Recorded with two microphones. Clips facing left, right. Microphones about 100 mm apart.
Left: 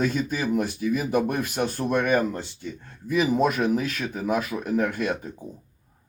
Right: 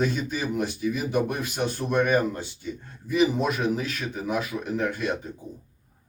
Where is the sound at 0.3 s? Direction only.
50° left (ahead or behind).